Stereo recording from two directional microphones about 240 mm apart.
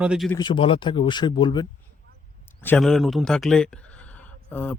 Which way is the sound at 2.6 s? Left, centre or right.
Centre.